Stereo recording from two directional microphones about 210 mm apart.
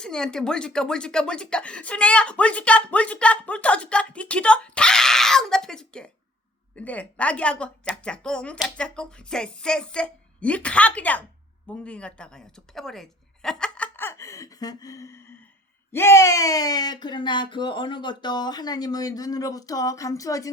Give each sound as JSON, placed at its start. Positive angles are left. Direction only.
{"t": 0.0, "sound": "speech", "side_deg": 5}